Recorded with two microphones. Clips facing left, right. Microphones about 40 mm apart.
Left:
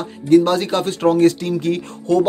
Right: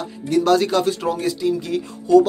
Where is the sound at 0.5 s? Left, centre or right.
Left.